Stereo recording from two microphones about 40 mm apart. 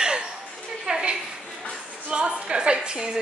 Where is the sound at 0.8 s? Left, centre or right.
Right.